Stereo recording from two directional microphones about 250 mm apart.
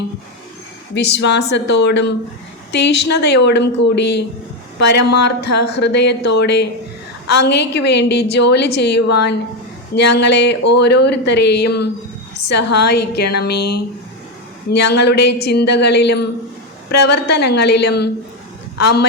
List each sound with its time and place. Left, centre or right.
0.9 s a woman's voice: left
14.9 s a woman's voice: left